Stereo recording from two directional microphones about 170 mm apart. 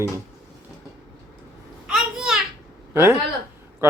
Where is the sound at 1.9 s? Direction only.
Centre (ahead or behind).